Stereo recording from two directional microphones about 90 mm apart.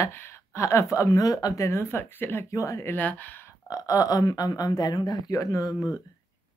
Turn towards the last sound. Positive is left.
turn(degrees=45)  # may be behind; listen again after turning